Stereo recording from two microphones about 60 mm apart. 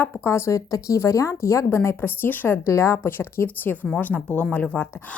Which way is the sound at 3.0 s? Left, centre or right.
Left.